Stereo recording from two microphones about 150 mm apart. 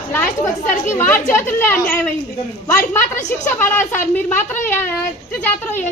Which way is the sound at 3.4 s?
15° left (ahead or behind).